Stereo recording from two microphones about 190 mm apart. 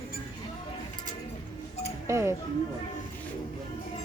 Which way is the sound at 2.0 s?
15° right (ahead or behind).